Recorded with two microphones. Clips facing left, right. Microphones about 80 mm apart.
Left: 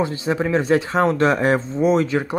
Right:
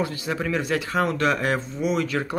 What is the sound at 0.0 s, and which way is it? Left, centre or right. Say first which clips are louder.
Speech: left 5 dB; left.